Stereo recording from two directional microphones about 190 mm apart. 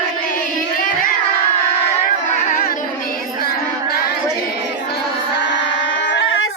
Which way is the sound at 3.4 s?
55° left (ahead or behind).